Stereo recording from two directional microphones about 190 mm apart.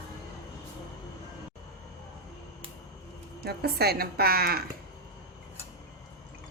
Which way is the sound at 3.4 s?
55° right (ahead or behind).